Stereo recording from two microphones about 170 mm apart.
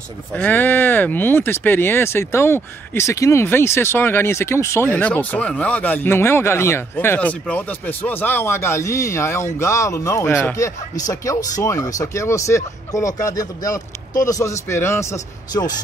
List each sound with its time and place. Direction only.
0.3 s speech: 10° left (ahead or behind)